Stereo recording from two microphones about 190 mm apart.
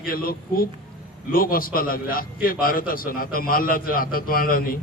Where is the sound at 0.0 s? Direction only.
50° left (ahead or behind).